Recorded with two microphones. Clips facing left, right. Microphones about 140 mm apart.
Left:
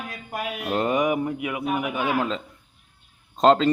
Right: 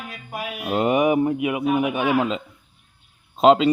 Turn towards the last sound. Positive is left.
turn(degrees=-10)  # may be behind; listen again after turning